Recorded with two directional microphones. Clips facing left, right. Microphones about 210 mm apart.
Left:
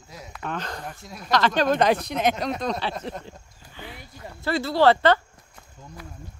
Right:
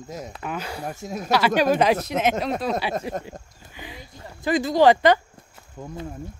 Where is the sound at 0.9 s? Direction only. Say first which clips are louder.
Right 9 dB; 45° right (ahead or behind).